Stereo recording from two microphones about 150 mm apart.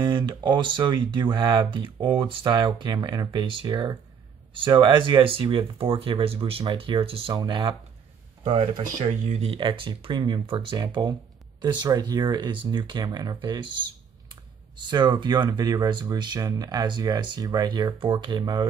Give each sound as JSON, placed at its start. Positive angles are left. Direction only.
{"t": 0.0, "sound": "speech", "side_deg": -30}